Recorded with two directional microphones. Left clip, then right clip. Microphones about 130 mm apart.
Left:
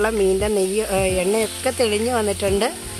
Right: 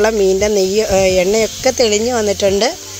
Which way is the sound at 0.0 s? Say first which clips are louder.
Right 6 dB; 25° right (ahead or behind).